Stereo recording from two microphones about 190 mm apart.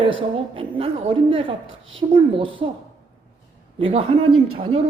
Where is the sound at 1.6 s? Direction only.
90° right.